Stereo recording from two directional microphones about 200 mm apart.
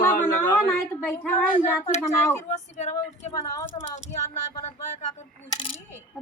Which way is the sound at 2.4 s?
35° left (ahead or behind).